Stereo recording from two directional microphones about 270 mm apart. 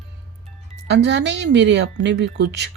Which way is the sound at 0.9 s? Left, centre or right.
Right.